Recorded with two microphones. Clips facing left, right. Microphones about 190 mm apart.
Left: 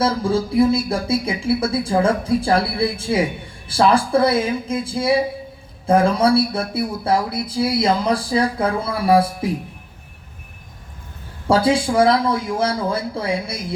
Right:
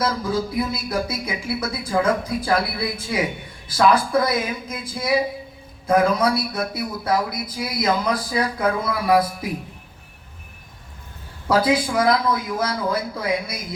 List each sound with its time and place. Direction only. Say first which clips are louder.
0.0 s speech: left 4 dB; 30° left (ahead or behind)
11.4 s speech: left 2 dB; 30° left (ahead or behind)